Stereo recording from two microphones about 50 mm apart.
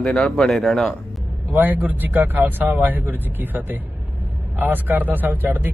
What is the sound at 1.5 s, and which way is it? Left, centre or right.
Speech, right.